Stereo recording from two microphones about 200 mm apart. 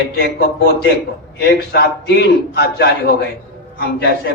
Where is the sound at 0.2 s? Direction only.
50° left (ahead or behind).